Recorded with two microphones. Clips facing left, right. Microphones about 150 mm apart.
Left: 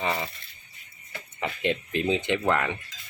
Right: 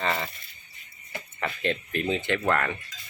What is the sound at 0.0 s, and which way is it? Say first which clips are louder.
Speech: even; 15° left (ahead or behind).